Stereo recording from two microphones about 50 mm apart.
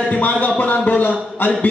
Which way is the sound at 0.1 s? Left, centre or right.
Left.